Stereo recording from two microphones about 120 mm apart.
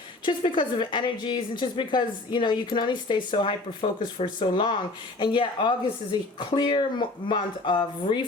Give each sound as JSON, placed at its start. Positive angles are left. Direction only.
{"t": 0.3, "sound": "a woman's voice", "side_deg": 45}